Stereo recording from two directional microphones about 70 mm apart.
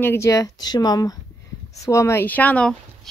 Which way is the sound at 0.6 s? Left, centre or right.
Left.